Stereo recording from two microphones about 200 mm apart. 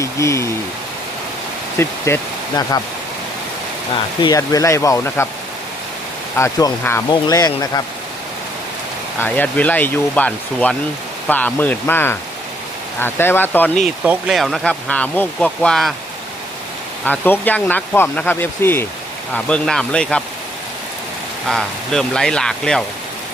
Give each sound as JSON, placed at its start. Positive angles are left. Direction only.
{"t": 0.0, "sound": "a sound", "side_deg": 15}
{"t": 1.8, "sound": "speech", "side_deg": 15}
{"t": 4.2, "sound": "speech", "side_deg": 20}
{"t": 6.3, "sound": "speech", "side_deg": 15}
{"t": 9.1, "sound": "speech", "side_deg": 10}
{"t": 14.0, "sound": "speech", "side_deg": -5}
{"t": 17.1, "sound": "speech", "side_deg": 10}
{"t": 21.4, "sound": "speech", "side_deg": 0}